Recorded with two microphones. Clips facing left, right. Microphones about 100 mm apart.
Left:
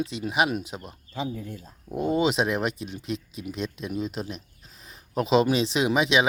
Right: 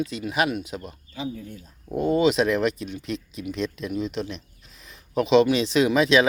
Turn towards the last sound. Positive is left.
turn(degrees=20)  # may be behind; listen again after turning